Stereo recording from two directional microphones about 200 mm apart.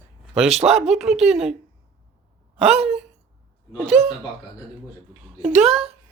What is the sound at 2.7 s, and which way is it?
Speech, 30° right (ahead or behind).